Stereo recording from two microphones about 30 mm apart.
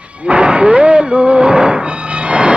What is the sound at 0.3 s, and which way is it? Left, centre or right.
Music, right.